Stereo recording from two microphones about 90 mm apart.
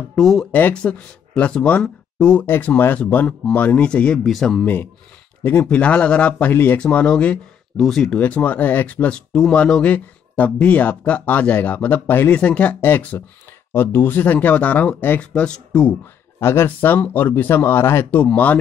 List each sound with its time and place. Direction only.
0.1 s speech: 5° left (ahead or behind)
0.5 s speech: 20° left (ahead or behind)
2.4 s speech: 25° left (ahead or behind); by 4.6 s 5° left (ahead or behind)
5.4 s speech: 20° left (ahead or behind)
16.3 s speech: 25° left (ahead or behind)